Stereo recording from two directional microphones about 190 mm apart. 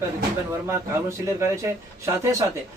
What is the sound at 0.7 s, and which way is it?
A man's voice, 15° right (ahead or behind).